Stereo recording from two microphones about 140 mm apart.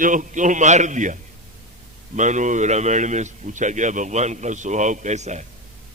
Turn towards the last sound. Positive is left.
turn(degrees=-55)  # may be behind; listen again after turning